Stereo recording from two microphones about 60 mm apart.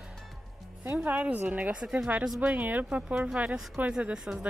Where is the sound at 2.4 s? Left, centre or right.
Right.